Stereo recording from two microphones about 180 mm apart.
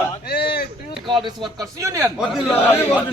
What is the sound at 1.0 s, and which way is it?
A man's voice, 25° right (ahead or behind).